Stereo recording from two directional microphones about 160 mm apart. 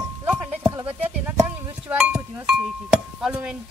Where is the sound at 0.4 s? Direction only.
5° right (ahead or behind).